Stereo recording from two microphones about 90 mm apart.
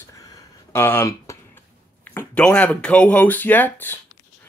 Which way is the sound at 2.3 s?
15° left (ahead or behind).